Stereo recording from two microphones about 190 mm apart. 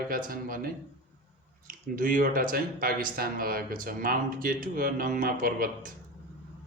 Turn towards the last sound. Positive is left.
turn(degrees=-50)  # may be behind; listen again after turning